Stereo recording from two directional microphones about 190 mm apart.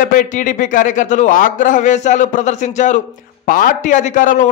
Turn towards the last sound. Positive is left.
turn(degrees=40)  # may be behind; listen again after turning